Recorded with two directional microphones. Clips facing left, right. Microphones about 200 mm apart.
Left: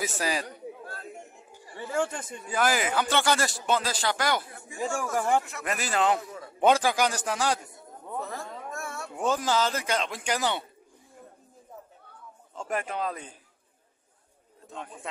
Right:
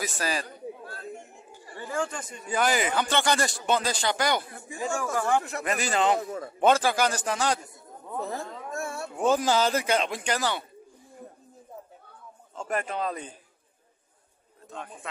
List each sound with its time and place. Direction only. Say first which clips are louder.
0.0 s a man's voice: left 1 dB; 15° left (ahead or behind)
2.5 s speech: right 1 dB; 5° left (ahead or behind)
4.6 s speech: even; 35° right (ahead or behind)
5.7 s speech: right 1 dB; 5° left (ahead or behind)
6.1 s speech: right 5 dB; 45° right (ahead or behind)
6.6 s a man's voice: even; 15° left (ahead or behind)
8.3 s a sound: right 3 dB; 30° right (ahead or behind)
9.2 s speech: right 3 dB; 10° right (ahead or behind)
10.2 s a man's voice: even; 10° left (ahead or behind)
12.5 s a man's voice: right 1 dB; 10° left (ahead or behind)